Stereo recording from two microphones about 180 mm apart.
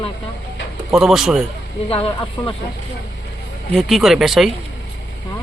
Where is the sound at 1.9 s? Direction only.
30° left (ahead or behind).